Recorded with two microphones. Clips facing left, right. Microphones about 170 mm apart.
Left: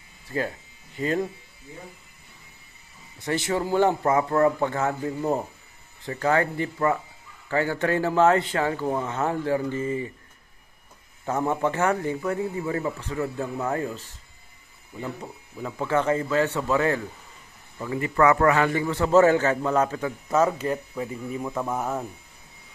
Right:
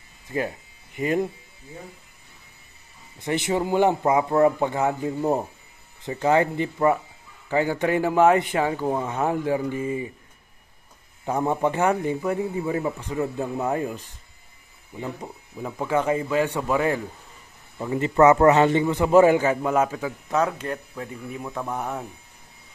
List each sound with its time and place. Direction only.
0.3 s a man's voice: 20° right (ahead or behind)
3.2 s a man's voice: 20° right (ahead or behind)
11.2 s a man's voice: 15° right (ahead or behind)
17.7 s a man's voice: 25° right (ahead or behind); by 22.0 s centre (ahead or behind)